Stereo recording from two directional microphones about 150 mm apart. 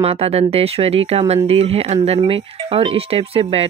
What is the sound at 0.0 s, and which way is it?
Speech, 40° right (ahead or behind).